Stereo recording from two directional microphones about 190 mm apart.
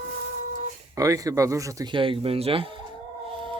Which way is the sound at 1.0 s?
20° right (ahead or behind).